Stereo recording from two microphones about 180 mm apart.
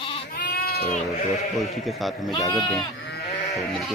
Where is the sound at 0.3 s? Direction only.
55° left (ahead or behind).